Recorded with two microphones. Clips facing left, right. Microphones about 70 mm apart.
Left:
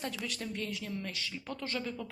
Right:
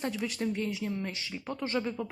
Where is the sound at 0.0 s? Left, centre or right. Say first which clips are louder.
Right 6 dB; right.